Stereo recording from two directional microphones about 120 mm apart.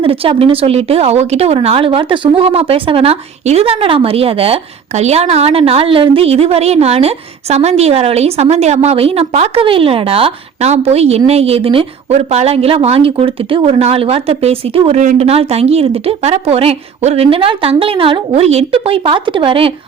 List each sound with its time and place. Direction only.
0.0 s a woman's voice: 50° right (ahead or behind)
12.1 s a woman's voice: 65° right (ahead or behind); by 19.7 s 50° right (ahead or behind)